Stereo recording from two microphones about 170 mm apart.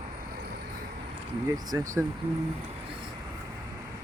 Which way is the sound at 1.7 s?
20° right (ahead or behind).